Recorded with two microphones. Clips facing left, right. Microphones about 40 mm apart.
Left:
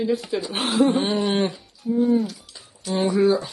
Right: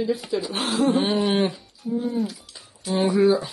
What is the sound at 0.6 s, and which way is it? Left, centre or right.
Speech, left.